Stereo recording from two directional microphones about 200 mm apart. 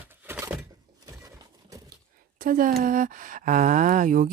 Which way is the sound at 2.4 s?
45° right (ahead or behind).